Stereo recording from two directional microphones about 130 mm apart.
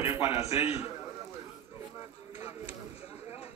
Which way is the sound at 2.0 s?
50° left (ahead or behind).